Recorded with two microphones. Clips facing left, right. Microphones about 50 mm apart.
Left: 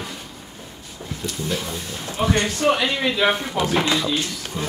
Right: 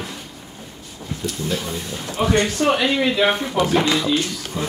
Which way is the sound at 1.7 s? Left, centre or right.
Centre.